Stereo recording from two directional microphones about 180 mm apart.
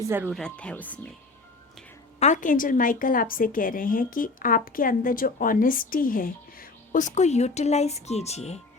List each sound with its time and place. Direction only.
0.0 s speech: 10° right (ahead or behind)
0.3 s speech: 5° left (ahead or behind)
2.1 s a woman's voice: 40° left (ahead or behind)